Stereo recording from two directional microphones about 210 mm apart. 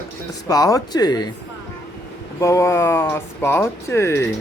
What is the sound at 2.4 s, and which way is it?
Speech, 15° left (ahead or behind).